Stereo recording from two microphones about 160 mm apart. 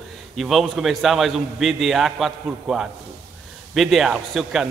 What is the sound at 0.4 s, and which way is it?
A man's voice, centre (ahead or behind).